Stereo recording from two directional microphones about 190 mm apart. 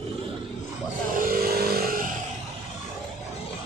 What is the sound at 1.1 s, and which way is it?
Vehicle, 50° right (ahead or behind).